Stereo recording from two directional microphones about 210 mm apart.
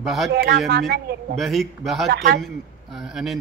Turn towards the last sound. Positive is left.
turn(degrees=0)  # may be behind; listen again after turning